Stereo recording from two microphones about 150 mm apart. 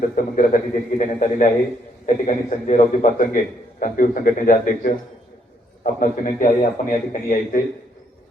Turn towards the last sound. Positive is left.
turn(degrees=55)  # may be behind; listen again after turning